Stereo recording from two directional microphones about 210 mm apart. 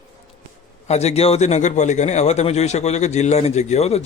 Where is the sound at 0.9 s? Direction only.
30° left (ahead or behind).